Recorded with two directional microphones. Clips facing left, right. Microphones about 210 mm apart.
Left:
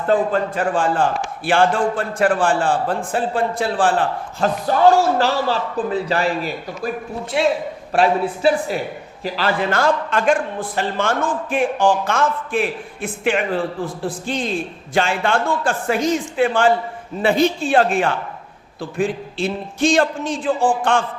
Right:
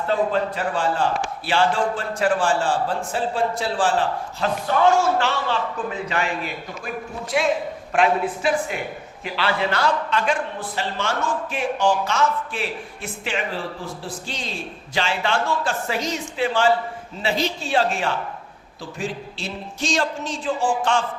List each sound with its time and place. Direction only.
0.1 s a man's voice: 50° left (ahead or behind)
4.4 s a man's voice: 40° left (ahead or behind); by 21.0 s 55° left (ahead or behind)